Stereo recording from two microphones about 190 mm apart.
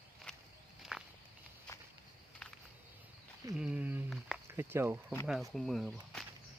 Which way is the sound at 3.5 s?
5° right (ahead or behind).